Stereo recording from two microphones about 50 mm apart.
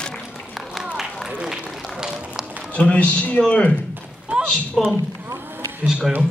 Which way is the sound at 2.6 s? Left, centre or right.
Left.